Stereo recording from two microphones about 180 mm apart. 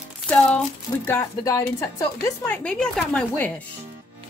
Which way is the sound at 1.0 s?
15° left (ahead or behind).